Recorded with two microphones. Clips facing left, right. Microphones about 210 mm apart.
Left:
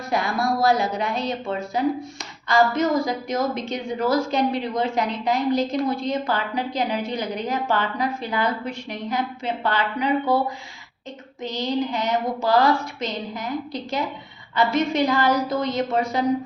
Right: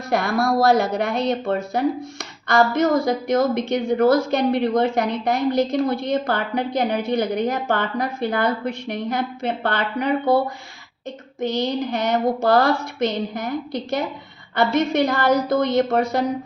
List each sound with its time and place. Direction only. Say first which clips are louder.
0.1 s a woman's voice: right 3 dB; 70° right (ahead or behind)
11.3 s speech: right 2 dB; 60° right (ahead or behind)
14.5 s speech: right 2 dB; 60° right (ahead or behind)